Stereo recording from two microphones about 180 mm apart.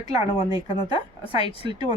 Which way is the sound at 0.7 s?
30° left (ahead or behind).